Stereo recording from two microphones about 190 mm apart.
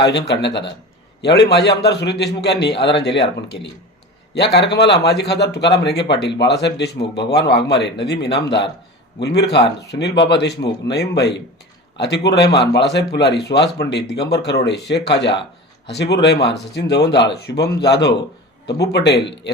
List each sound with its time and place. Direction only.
0.1 s speech: 65° left (ahead or behind)